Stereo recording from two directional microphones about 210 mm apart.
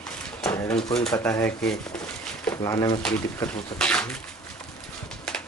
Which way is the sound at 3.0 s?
5° left (ahead or behind).